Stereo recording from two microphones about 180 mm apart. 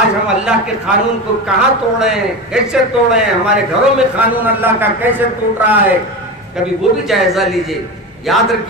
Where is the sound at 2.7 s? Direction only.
5° right (ahead or behind).